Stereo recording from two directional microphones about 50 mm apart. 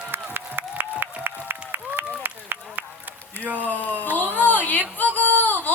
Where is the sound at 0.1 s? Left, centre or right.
Right.